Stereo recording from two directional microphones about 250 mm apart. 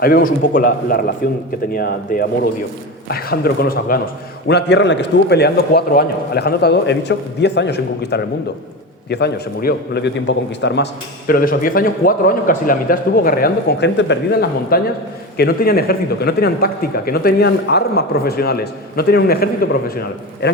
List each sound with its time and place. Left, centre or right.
0.0 s a man's voice: left